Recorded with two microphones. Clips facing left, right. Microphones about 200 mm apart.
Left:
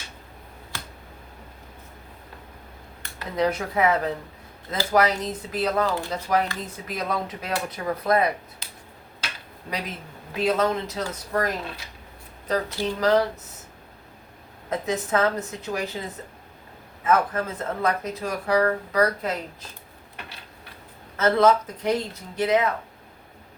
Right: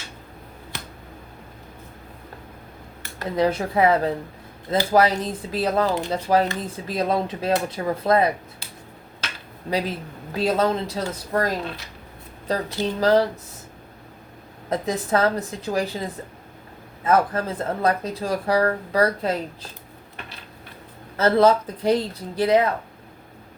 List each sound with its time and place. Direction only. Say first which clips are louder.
3.3 s speech: right 3 dB; 30° right (ahead or behind)
9.6 s speech: right 7 dB; 30° right (ahead or behind)
14.7 s speech: right 2 dB; 35° right (ahead or behind)
21.2 s speech: right 2 dB; 35° right (ahead or behind)